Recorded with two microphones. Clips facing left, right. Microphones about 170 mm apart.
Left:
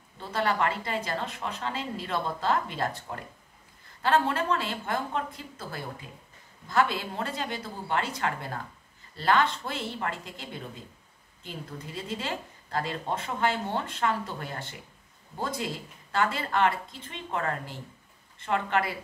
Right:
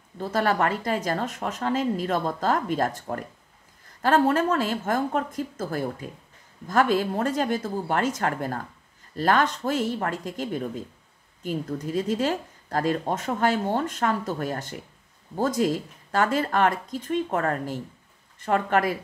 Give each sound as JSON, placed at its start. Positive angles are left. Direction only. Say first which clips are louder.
{"t": 0.2, "sound": "speech", "louder": "right 4 dB", "side_deg": -45}